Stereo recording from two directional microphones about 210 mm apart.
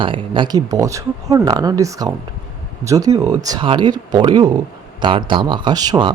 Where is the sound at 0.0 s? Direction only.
25° right (ahead or behind).